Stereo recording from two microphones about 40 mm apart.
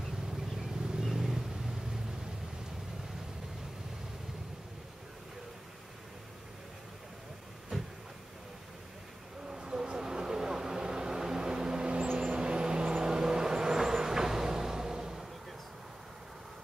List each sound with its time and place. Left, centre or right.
0.3 s vehicle: centre
9.5 s vehicle: centre